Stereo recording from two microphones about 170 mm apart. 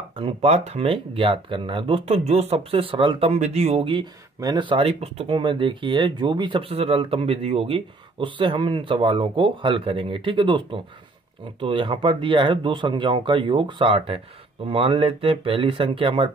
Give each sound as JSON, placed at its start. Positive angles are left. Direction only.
{"t": 0.1, "sound": "speech", "side_deg": -35}